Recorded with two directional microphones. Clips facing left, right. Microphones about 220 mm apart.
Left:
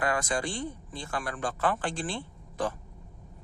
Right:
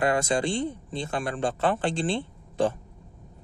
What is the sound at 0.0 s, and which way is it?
A man's voice, 25° right (ahead or behind).